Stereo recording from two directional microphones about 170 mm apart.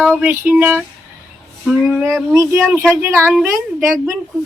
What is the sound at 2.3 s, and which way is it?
A woman's voice, 15° right (ahead or behind).